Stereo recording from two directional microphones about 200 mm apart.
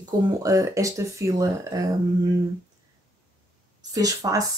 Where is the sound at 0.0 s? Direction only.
15° right (ahead or behind).